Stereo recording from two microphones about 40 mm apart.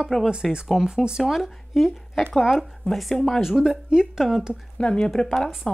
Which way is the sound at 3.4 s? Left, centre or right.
Centre.